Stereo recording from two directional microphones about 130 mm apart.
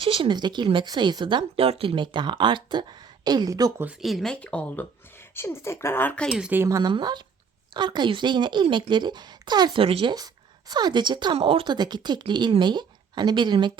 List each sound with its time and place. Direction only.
0.0 s speech: 40° right (ahead or behind)
4.0 s speech: centre (ahead or behind)
6.3 s speech: 5° right (ahead or behind)
6.6 s speech: 25° right (ahead or behind)